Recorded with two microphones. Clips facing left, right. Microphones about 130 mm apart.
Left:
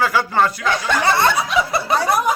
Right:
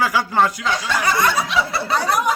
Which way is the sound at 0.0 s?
15° right (ahead or behind).